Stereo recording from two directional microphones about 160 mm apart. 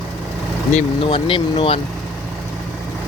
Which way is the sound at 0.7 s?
40° left (ahead or behind).